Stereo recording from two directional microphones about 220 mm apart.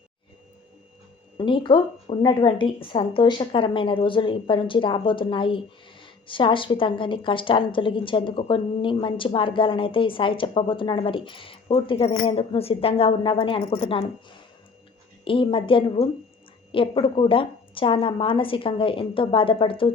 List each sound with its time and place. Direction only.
1.4 s a woman's voice: 20° left (ahead or behind)